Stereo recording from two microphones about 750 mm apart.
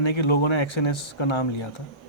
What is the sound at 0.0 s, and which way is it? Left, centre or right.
Speech, left.